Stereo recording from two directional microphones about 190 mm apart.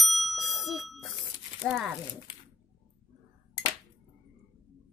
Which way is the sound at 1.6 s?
5° right (ahead or behind).